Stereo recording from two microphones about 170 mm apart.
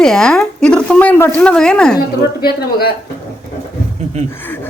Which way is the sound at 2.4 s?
65° left (ahead or behind).